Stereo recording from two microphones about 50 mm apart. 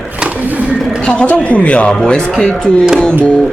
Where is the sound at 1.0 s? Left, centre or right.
Left.